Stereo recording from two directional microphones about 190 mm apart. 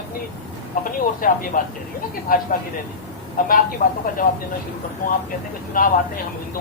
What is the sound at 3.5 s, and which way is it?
Speech, 45° left (ahead or behind).